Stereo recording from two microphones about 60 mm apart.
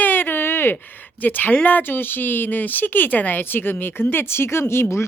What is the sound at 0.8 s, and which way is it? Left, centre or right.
Speech, left.